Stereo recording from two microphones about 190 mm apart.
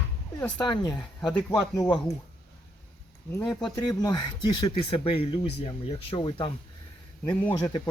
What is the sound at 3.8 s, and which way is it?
Speech, 20° left (ahead or behind).